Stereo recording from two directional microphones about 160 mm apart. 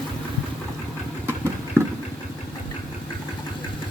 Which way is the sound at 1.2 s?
15° right (ahead or behind).